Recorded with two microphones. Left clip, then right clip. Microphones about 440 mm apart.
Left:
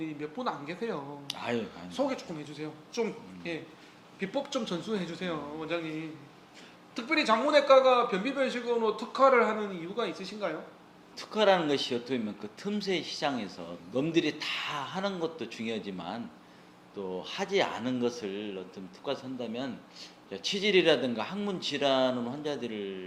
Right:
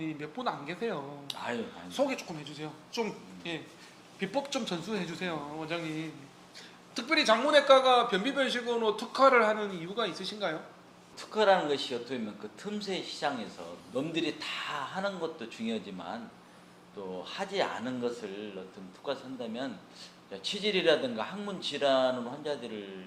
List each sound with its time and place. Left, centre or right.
0.0 s a man's voice: centre
1.3 s a man's voice: left
1.9 s a man's voice: centre
6.9 s a man's voice: centre
11.2 s a man's voice: left
17.2 s a man's voice: left